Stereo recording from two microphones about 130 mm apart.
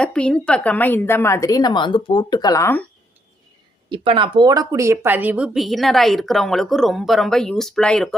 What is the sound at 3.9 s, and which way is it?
Speech, 40° right (ahead or behind).